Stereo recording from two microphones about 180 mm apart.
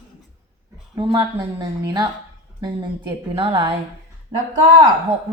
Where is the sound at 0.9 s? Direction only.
25° right (ahead or behind).